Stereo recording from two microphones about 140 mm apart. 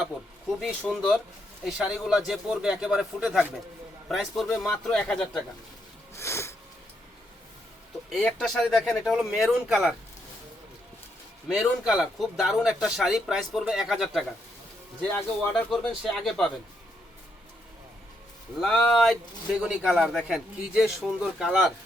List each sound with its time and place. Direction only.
0.6 s speech: centre (ahead or behind)
6.1 s a sound: 20° left (ahead or behind)
8.1 s speech: 5° left (ahead or behind)
11.4 s speech: 5° right (ahead or behind)
18.6 s speech: centre (ahead or behind)